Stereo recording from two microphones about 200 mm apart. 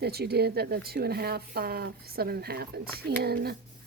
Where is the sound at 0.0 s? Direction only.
55° right (ahead or behind).